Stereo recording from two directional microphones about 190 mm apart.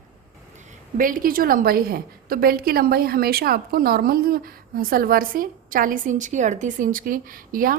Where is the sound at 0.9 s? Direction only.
45° right (ahead or behind).